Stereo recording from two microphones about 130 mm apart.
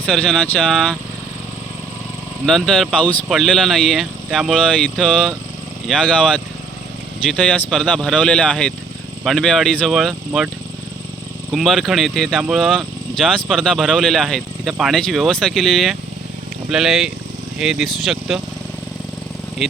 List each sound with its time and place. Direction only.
0.0 s speech: 5° left (ahead or behind)
2.5 s speech: 5° left (ahead or behind)
11.5 s speech: centre (ahead or behind)